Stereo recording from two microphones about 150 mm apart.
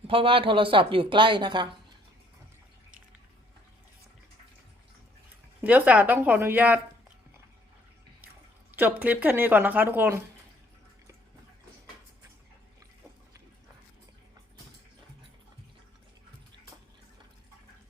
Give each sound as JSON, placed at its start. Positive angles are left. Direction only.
{"t": 0.1, "sound": "speech", "side_deg": -35}
{"t": 5.6, "sound": "speech", "side_deg": -10}
{"t": 8.7, "sound": "speech", "side_deg": -10}